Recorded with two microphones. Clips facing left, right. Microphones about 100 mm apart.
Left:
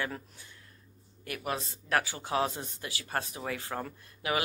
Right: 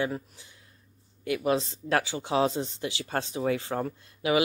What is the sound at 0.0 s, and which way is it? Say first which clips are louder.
Speech: right 6 dB; 20° right (ahead or behind).